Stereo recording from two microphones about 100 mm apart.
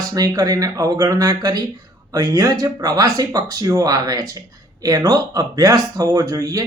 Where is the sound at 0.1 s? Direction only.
35° right (ahead or behind).